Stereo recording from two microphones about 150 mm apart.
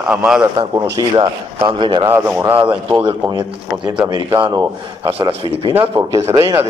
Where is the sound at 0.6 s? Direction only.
30° right (ahead or behind).